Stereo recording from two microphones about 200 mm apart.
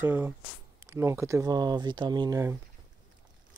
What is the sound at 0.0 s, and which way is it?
Speech, 10° right (ahead or behind).